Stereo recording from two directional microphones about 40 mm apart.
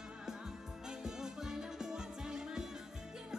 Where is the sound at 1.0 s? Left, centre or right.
Centre.